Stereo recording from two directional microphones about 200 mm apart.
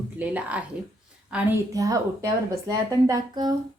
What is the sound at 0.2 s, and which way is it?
A woman's voice, 5° right (ahead or behind).